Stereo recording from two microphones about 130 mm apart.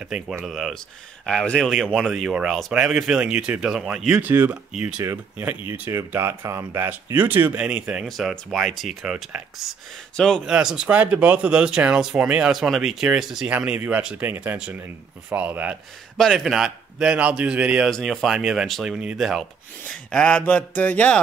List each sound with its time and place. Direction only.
0.0 s speech: 5° right (ahead or behind)
10.4 s speech: 5° right (ahead or behind)
16.2 s speech: centre (ahead or behind)
19.9 s speech: 10° left (ahead or behind)